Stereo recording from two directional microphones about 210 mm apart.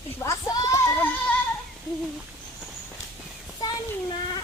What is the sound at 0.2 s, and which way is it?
Child singing, 15° left (ahead or behind).